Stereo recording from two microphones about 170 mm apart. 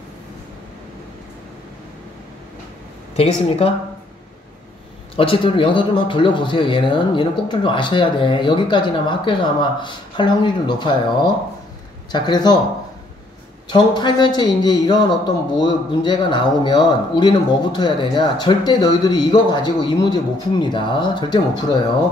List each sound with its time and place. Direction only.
3.2 s a woman's voice: 35° left (ahead or behind)
5.1 s speech: 30° left (ahead or behind)
13.7 s speech: 25° left (ahead or behind)